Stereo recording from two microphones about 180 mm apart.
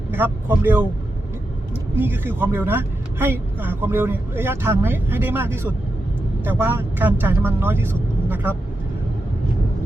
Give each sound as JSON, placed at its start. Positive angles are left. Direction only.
{"t": 0.1, "sound": "speech", "side_deg": -10}
{"t": 2.0, "sound": "speech", "side_deg": -10}